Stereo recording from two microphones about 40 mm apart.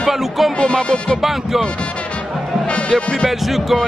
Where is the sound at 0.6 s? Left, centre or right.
Left.